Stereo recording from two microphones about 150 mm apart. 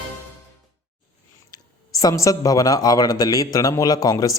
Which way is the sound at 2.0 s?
20° left (ahead or behind).